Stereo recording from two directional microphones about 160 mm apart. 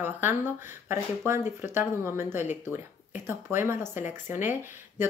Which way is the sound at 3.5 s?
15° right (ahead or behind).